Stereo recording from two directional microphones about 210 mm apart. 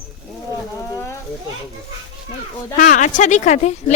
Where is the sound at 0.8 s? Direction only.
15° left (ahead or behind).